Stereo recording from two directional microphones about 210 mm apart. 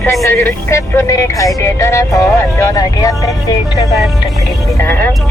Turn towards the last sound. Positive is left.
turn(degrees=10)  # may be behind; listen again after turning